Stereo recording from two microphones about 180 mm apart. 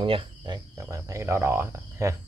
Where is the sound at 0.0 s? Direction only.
30° right (ahead or behind).